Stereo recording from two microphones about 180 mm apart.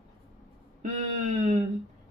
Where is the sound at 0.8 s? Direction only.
40° right (ahead or behind).